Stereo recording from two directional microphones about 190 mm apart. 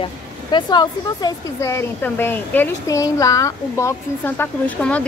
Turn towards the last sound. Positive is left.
turn(degrees=5)  # may be behind; listen again after turning